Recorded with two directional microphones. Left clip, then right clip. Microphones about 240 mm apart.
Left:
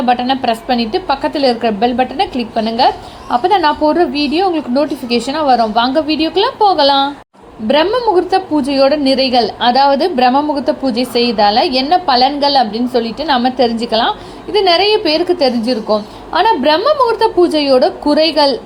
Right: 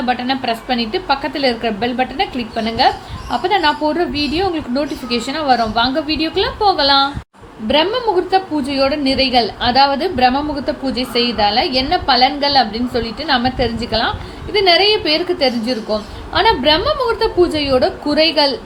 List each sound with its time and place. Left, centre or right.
0.0 s a woman's voice: centre